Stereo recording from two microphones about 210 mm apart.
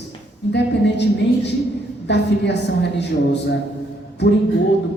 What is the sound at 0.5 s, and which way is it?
Speech, 55° left (ahead or behind).